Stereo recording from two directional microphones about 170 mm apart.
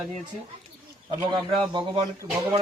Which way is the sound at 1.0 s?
30° right (ahead or behind).